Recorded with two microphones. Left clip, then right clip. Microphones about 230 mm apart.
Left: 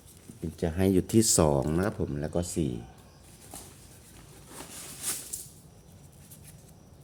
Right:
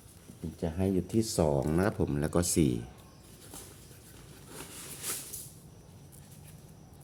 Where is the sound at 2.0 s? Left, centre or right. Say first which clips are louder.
Right 2 dB; centre.